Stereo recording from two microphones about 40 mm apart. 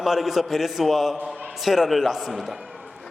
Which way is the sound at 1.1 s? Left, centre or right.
Right.